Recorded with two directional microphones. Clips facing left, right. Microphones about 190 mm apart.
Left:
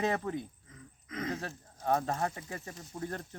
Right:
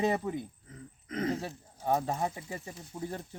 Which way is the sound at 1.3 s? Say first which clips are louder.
Right 3 dB; 15° right (ahead or behind).